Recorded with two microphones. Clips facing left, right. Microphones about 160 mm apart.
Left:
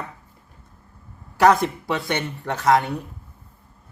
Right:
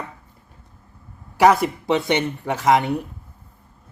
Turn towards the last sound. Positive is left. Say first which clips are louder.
# right 1 dB
turn(degrees=-15)  # may be behind; listen again after turning